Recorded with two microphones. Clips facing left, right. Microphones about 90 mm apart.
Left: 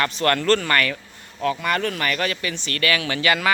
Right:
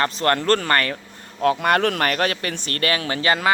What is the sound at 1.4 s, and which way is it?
Speech, 55° right (ahead or behind).